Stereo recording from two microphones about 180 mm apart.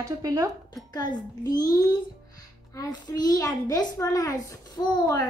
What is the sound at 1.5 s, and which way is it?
A child's voice, 20° left (ahead or behind).